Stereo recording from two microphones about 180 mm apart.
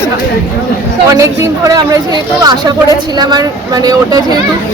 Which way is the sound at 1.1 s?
20° right (ahead or behind).